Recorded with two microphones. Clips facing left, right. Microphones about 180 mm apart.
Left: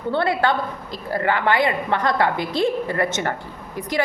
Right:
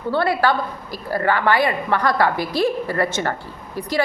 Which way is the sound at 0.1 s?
20° left (ahead or behind).